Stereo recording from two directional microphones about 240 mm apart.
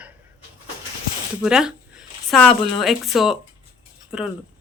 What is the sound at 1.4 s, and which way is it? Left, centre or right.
Speech, centre.